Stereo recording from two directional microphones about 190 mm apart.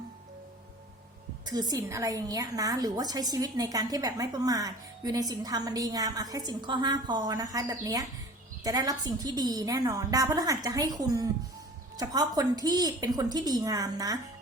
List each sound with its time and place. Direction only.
1.5 s a woman's voice: 20° right (ahead or behind)